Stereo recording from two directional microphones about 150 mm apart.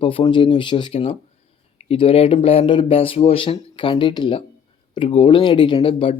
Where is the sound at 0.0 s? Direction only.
35° left (ahead or behind).